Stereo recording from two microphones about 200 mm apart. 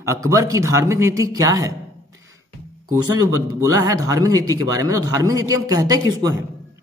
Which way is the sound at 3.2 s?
15° right (ahead or behind).